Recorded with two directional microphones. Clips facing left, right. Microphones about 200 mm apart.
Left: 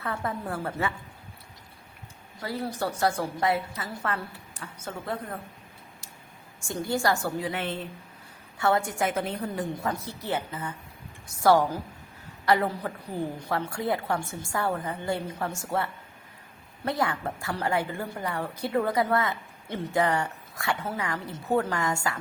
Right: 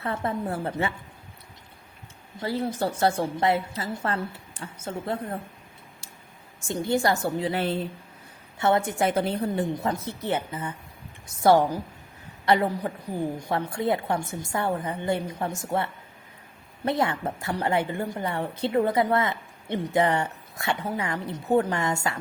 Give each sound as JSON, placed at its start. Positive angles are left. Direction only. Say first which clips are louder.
{"t": 0.0, "sound": "a woman's voice", "louder": "right 3 dB", "side_deg": -30}
{"t": 2.4, "sound": "a woman's voice", "louder": "right 4 dB", "side_deg": -25}
{"t": 6.7, "sound": "a woman's voice", "louder": "right 3 dB", "side_deg": -20}
{"t": 8.5, "sound": "a woman's voice", "louder": "right 2 dB", "side_deg": -20}